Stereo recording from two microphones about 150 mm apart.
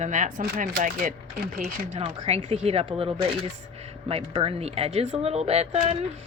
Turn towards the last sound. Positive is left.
turn(degrees=-45)  # may be behind; listen again after turning